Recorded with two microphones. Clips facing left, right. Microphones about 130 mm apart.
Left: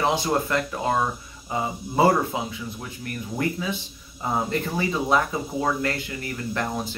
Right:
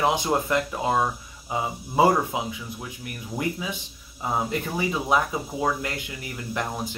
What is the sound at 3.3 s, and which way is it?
Speech, 15° right (ahead or behind).